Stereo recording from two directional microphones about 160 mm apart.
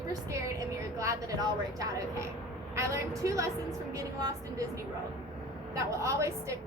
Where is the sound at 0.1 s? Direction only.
20° right (ahead or behind).